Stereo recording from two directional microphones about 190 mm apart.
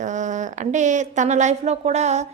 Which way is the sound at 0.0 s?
40° right (ahead or behind).